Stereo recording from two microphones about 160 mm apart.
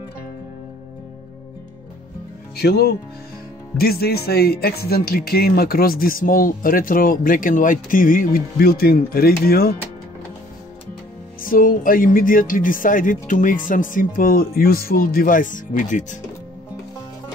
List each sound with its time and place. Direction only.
2.5 s speech: 85° left
11.4 s speech: 60° left (ahead or behind)